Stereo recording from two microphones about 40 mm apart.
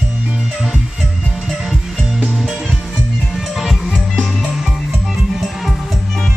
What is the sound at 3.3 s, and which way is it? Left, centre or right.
Music, centre.